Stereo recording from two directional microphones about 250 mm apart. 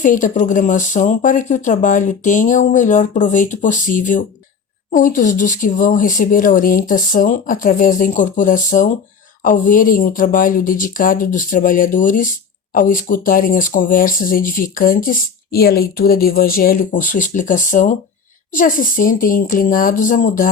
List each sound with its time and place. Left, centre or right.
0.0 s speech: left